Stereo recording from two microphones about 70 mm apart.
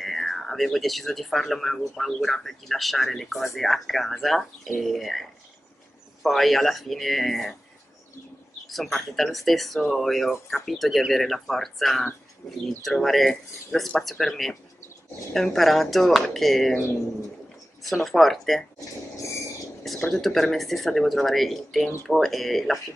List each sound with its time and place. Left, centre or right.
0.0 s speech: centre
6.2 s speech: centre
8.6 s speech: centre
17.8 s speech: centre
19.9 s a sound: centre
20.2 s speech: centre